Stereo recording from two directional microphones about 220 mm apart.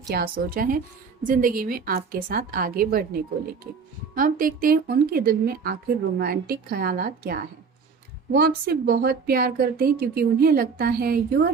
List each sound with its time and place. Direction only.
0.1 s a woman's voice: 45° right (ahead or behind)